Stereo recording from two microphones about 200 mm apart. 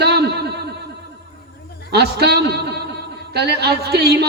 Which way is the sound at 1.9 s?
55° right (ahead or behind).